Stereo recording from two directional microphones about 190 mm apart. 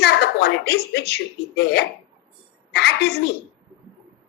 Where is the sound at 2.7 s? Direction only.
60° left (ahead or behind).